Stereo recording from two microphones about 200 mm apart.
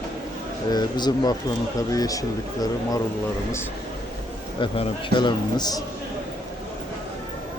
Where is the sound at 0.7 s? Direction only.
20° left (ahead or behind).